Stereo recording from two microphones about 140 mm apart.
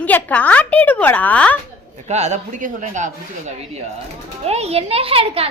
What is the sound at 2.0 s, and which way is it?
A man's voice, 55° right (ahead or behind).